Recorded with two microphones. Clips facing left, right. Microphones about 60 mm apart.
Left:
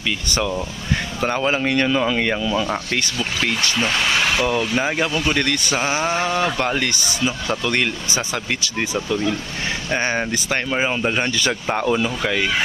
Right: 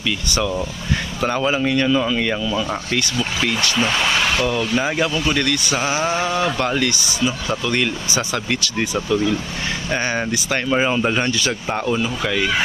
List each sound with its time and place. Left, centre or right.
0.3 s speech: left
1.6 s speech: left
3.8 s speech: centre
4.8 s speech: left
5.3 s speech: left
6.7 s speech: left
8.1 s speech: left
10.0 s speech: left
10.7 s speech: centre
11.9 s speech: left
12.2 s speech: left